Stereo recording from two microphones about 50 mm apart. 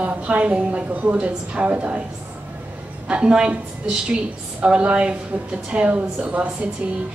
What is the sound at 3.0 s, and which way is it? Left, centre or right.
Speech, centre.